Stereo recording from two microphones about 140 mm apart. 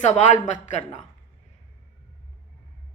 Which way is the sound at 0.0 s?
55° left (ahead or behind).